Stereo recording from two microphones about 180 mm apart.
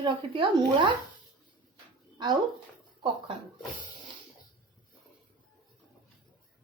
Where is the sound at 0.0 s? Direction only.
25° right (ahead or behind).